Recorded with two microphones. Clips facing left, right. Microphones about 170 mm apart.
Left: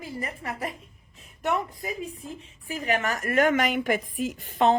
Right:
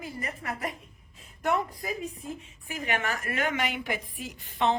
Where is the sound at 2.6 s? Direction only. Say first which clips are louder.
Left 4 dB; 35° left (ahead or behind).